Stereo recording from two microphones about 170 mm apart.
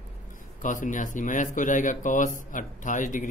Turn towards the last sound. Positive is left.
turn(degrees=50)  # may be behind; listen again after turning